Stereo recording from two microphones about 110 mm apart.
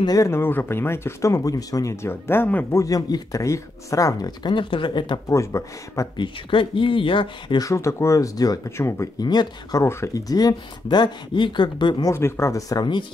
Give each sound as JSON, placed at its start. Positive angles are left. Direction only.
{"t": 0.0, "sound": "speech", "side_deg": 30}
{"t": 2.8, "sound": "speech", "side_deg": 30}
{"t": 5.3, "sound": "speech", "side_deg": 30}
{"t": 6.1, "sound": "speech", "side_deg": 50}
{"t": 7.6, "sound": "speech", "side_deg": 25}
{"t": 9.2, "sound": "speech", "side_deg": 40}
{"t": 9.8, "sound": "speech", "side_deg": 25}
{"t": 12.1, "sound": "speech", "side_deg": 25}